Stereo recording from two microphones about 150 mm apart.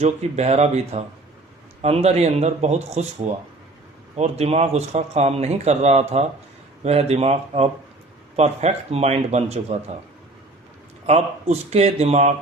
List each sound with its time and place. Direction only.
0.0 s speech: 45° right (ahead or behind)
11.0 s speech: 45° right (ahead or behind)